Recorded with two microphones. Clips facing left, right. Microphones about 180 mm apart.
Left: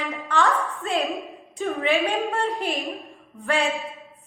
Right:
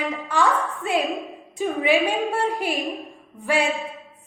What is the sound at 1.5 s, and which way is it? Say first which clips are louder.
A woman's voice: right 3 dB; 15° right (ahead or behind).